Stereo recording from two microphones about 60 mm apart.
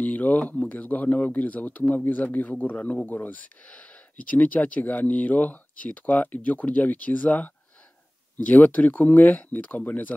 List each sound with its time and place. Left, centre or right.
0.0 s speech: left